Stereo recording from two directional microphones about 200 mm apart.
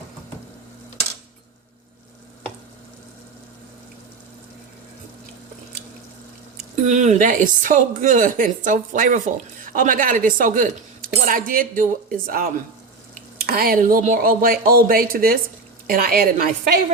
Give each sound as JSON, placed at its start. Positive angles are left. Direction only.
{"t": 6.8, "sound": "a woman's voice", "side_deg": -35}